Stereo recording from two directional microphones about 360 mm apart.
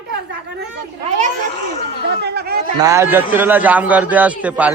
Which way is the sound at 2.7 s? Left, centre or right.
Centre.